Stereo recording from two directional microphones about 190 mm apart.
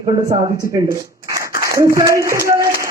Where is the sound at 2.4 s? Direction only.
15° right (ahead or behind).